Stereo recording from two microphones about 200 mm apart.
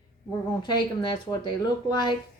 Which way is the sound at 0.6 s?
20° left (ahead or behind).